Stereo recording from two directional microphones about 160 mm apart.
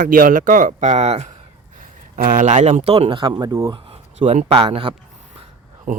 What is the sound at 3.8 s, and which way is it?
Speech, 35° right (ahead or behind).